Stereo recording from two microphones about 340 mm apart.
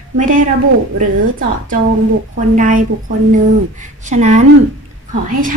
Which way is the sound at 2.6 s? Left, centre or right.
Right.